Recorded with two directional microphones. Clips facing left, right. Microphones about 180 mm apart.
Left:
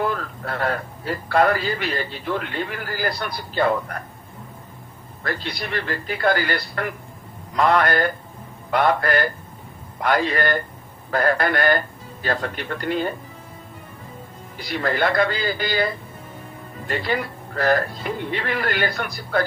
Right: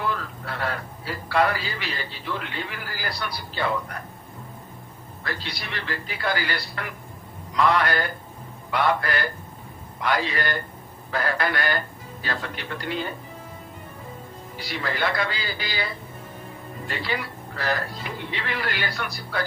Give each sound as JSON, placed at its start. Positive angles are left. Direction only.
{"t": 0.0, "sound": "a man's voice", "side_deg": 45}
{"t": 5.2, "sound": "a man's voice", "side_deg": 50}
{"t": 14.5, "sound": "a man's voice", "side_deg": 50}